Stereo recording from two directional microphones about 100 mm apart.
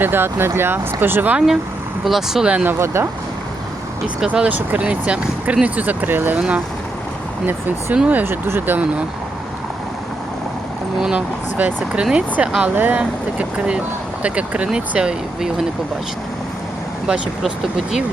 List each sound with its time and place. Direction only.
0.0 s speech: 20° right (ahead or behind)
2.0 s speech: 5° right (ahead or behind)
2.6 s speech: 25° right (ahead or behind)
4.0 s speech: 10° right (ahead or behind)
7.9 s speech: 15° right (ahead or behind)
11.0 s speech: 15° right (ahead or behind)